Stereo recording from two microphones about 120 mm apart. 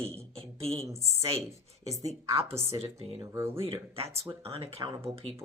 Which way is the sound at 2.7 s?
55° right (ahead or behind).